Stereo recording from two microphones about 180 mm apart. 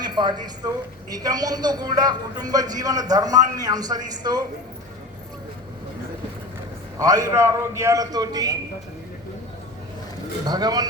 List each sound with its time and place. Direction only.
0.0 s a woman's voice: 25° right (ahead or behind)
7.0 s a man's voice: 20° right (ahead or behind)
10.4 s a man's voice: 20° right (ahead or behind)